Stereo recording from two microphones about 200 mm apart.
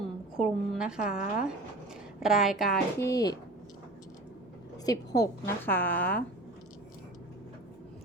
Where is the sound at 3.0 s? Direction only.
15° left (ahead or behind).